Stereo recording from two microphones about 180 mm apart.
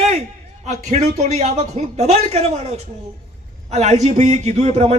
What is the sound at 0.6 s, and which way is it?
A man's voice, 40° right (ahead or behind).